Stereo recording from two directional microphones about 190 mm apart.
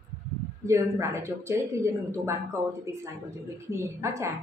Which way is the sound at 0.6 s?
15° right (ahead or behind).